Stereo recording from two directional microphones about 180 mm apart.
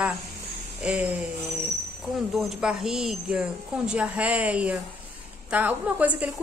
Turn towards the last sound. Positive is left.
turn(degrees=-10)  # may be behind; listen again after turning